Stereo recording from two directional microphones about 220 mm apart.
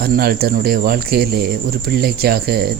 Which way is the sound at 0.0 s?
45° right (ahead or behind).